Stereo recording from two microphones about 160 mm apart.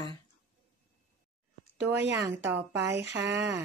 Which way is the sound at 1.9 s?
15° right (ahead or behind).